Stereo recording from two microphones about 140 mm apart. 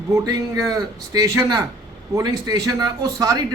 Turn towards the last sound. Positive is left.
turn(degrees=-25)  # may be behind; listen again after turning